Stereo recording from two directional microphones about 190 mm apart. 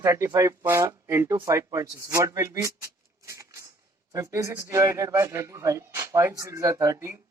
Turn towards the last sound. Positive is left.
turn(degrees=-15)  # may be behind; listen again after turning